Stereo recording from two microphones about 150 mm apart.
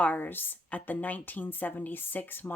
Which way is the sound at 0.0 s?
10° left (ahead or behind).